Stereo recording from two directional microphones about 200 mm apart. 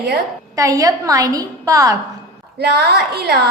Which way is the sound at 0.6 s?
15° right (ahead or behind).